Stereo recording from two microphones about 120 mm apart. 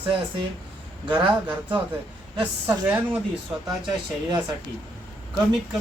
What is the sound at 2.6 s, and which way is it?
Speech, 15° right (ahead or behind).